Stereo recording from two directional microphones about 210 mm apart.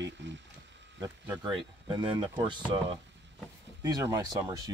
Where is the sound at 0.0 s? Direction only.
60° right (ahead or behind).